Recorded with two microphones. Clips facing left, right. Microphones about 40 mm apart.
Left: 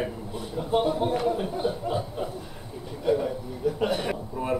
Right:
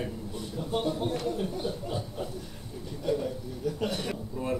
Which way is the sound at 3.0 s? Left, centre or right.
Left.